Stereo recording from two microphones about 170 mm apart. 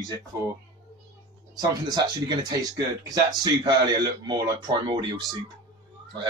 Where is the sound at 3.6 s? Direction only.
25° right (ahead or behind).